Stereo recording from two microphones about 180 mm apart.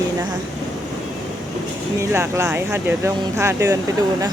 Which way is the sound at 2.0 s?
15° right (ahead or behind).